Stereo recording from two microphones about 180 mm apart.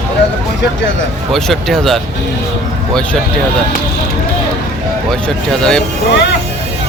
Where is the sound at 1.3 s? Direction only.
Centre (ahead or behind).